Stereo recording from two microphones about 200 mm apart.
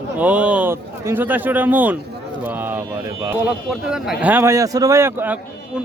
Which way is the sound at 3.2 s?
5° right (ahead or behind).